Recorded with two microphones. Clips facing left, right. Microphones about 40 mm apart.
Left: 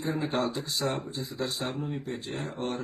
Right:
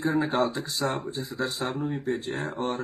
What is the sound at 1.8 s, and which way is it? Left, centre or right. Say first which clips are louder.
Speech: right 5 dB; centre.